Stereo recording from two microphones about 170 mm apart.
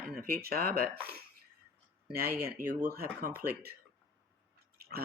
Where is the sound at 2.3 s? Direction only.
15° right (ahead or behind).